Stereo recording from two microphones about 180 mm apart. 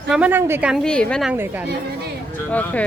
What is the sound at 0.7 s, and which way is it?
Speech, 5° left (ahead or behind).